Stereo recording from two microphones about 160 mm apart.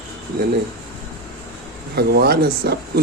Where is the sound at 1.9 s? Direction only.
85° right.